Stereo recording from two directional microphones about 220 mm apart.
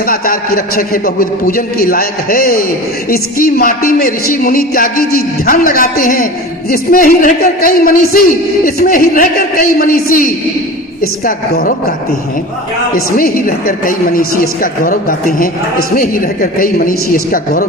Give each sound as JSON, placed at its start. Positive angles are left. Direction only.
{"t": 0.0, "sound": "a man's voice", "side_deg": 40}
{"t": 11.3, "sound": "a man's voice", "side_deg": 45}
{"t": 12.9, "sound": "speech", "side_deg": 40}